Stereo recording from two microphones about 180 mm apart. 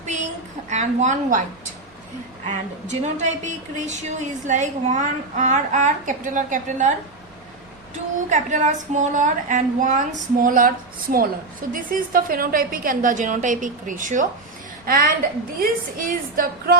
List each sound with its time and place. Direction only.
0.0 s a sound: 40° right (ahead or behind)
0.7 s a woman's voice: 40° right (ahead or behind)
2.8 s a woman's voice: 40° right (ahead or behind)
8.3 s a woman's voice: 45° right (ahead or behind)